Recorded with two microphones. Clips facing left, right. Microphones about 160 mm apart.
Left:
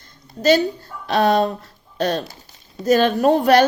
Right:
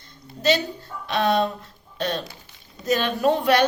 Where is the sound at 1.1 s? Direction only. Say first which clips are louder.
Left 4 dB; 40° left (ahead or behind).